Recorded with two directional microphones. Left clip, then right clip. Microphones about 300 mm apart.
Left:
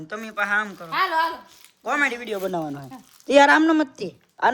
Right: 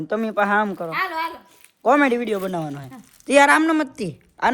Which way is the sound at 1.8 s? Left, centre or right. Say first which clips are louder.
Right 6 dB; centre.